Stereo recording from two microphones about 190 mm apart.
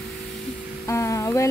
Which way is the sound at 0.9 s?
15° left (ahead or behind).